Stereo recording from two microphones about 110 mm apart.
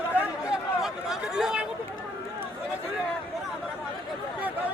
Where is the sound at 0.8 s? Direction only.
5° right (ahead or behind).